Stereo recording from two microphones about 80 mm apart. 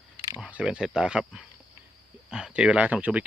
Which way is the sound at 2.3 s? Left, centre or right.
Centre.